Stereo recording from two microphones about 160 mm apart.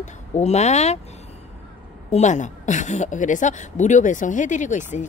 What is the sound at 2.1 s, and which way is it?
A woman's voice, 45° left (ahead or behind).